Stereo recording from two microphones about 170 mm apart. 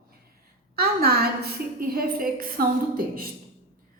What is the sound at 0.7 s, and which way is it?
A woman's voice, 65° right (ahead or behind).